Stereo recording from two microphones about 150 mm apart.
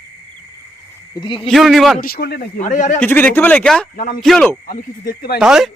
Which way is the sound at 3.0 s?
10° left (ahead or behind).